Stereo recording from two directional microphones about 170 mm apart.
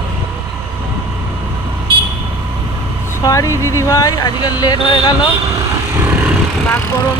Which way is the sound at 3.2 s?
20° left (ahead or behind).